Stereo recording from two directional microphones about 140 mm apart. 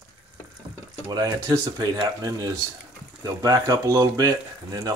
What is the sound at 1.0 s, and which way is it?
Speech, 25° right (ahead or behind).